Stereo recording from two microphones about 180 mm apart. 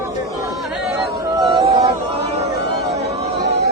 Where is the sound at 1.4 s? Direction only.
25° right (ahead or behind).